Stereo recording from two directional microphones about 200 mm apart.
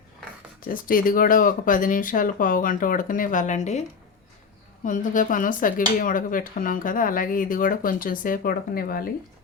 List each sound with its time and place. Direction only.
0.6 s speech: 45° left (ahead or behind)
4.9 s speech: 40° left (ahead or behind)